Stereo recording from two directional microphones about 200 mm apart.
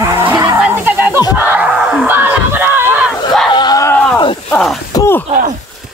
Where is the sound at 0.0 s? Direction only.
10° right (ahead or behind).